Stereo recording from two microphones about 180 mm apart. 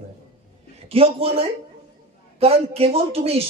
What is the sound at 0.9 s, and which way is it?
Speech, 30° right (ahead or behind).